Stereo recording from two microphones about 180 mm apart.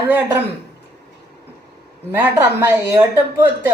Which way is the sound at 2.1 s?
10° right (ahead or behind).